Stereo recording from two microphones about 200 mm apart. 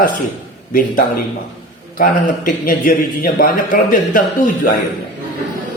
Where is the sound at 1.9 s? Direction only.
45° left (ahead or behind).